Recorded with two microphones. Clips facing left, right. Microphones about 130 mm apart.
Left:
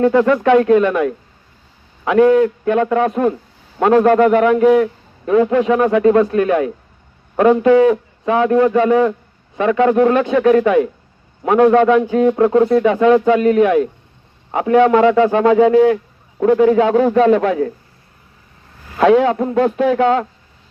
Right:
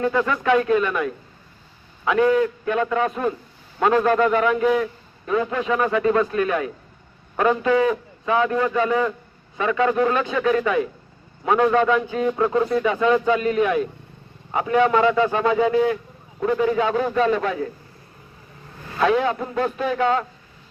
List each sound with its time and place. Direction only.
0.0 s a man's voice: 65° left (ahead or behind)
18.9 s speech: 90° left